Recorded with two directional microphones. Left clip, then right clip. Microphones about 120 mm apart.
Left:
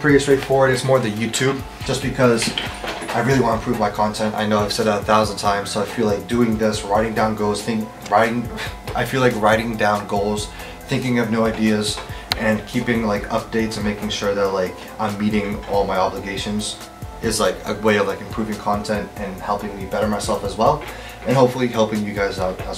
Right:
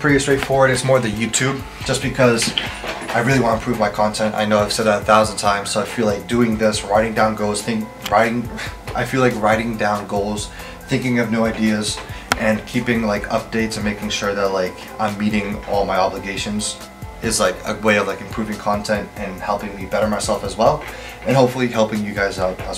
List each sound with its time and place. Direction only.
0.0 s speech: 5° right (ahead or behind)
1.9 s speech: 20° right (ahead or behind); by 8.4 s centre (ahead or behind)
8.9 s speech: 15° left (ahead or behind)
11.1 s speech: 5° left (ahead or behind)